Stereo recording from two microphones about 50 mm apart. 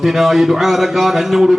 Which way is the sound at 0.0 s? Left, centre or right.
Centre.